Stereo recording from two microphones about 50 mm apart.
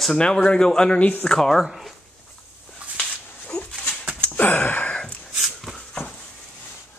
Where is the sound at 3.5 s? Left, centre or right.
Centre.